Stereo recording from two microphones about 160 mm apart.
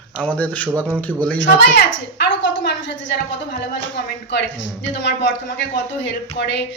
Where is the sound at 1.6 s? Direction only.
90° left.